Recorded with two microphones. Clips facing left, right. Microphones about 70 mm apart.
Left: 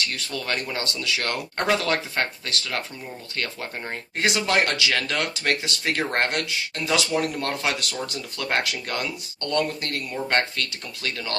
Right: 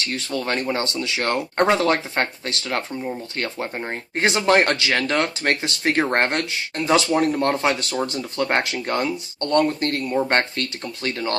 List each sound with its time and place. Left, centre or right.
0.0 s speech: right